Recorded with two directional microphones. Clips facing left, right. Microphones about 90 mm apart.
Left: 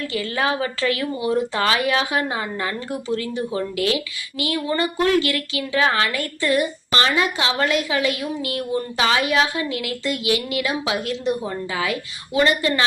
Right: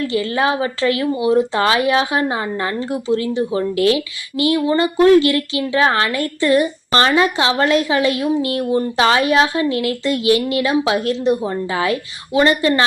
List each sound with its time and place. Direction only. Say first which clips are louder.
0.1 s speech: right 3 dB; 25° right (ahead or behind)